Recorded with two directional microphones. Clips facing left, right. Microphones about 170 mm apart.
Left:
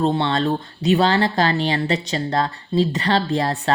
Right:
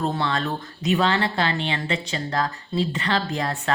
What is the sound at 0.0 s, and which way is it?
A woman's voice, 30° left (ahead or behind).